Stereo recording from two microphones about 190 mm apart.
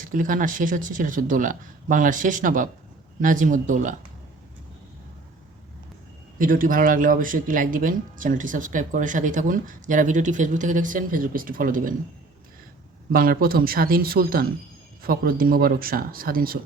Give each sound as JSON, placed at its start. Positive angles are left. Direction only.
{"t": 0.0, "sound": "speech", "side_deg": -45}
{"t": 6.4, "sound": "speech", "side_deg": -45}
{"t": 13.1, "sound": "speech", "side_deg": -50}